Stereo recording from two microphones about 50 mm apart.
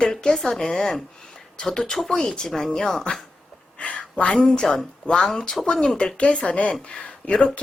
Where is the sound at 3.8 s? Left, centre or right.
Left.